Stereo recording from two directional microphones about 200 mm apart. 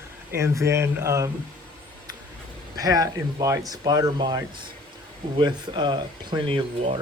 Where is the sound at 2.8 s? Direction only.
20° right (ahead or behind).